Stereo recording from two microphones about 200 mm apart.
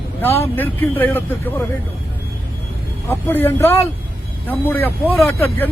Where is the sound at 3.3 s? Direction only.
10° left (ahead or behind).